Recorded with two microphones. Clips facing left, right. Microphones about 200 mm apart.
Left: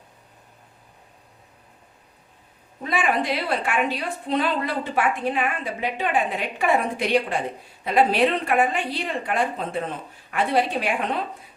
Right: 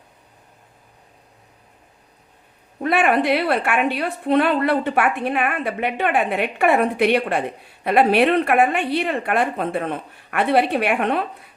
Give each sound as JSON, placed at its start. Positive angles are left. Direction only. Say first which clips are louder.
{"t": 2.8, "sound": "a woman's voice", "louder": "right 6 dB", "side_deg": -60}